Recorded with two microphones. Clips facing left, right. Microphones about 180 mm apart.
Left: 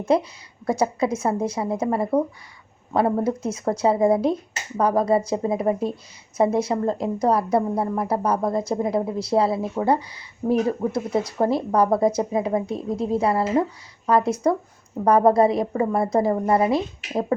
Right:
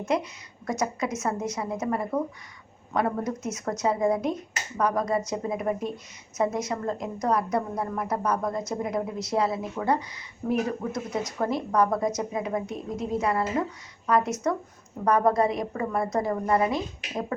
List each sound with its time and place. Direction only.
0.0 s a woman's voice: 30° left (ahead or behind)